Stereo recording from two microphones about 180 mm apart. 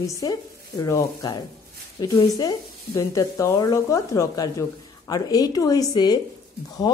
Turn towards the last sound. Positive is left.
turn(degrees=25)  # may be behind; listen again after turning